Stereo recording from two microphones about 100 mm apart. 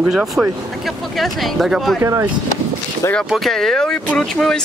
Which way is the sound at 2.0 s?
30° right (ahead or behind).